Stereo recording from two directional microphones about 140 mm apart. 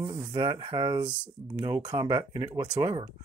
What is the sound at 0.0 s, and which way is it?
Speech, 35° right (ahead or behind).